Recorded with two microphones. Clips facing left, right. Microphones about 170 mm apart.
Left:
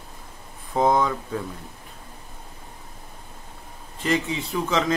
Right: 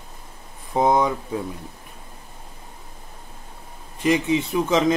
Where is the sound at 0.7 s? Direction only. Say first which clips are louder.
Right 2 dB; 15° right (ahead or behind).